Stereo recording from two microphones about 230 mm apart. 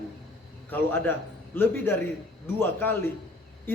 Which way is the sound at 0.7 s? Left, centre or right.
Centre.